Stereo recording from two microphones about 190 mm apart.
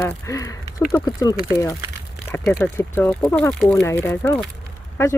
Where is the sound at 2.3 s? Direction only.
5° left (ahead or behind).